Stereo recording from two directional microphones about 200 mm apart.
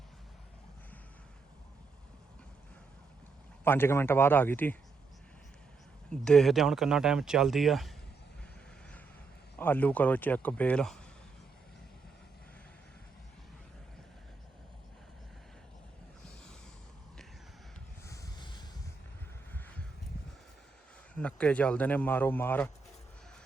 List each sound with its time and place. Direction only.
3.6 s speech: 10° left (ahead or behind)
6.1 s speech: 5° left (ahead or behind)
9.6 s speech: 10° left (ahead or behind)
18.0 s snort: 15° left (ahead or behind)
19.5 s a sound: 10° left (ahead or behind)
21.2 s speech: 5° left (ahead or behind)